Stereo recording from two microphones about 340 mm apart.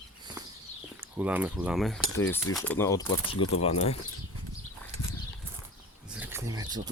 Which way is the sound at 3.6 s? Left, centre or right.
Centre.